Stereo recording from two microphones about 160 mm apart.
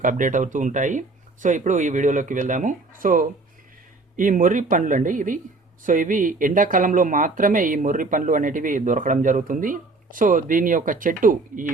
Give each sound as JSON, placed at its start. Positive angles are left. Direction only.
{"t": 0.0, "sound": "speech", "side_deg": -55}